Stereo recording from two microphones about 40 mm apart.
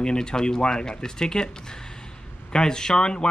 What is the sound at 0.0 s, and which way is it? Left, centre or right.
Speech, left.